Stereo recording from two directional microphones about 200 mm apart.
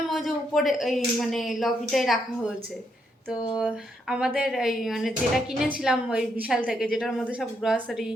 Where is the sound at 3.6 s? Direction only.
5° right (ahead or behind).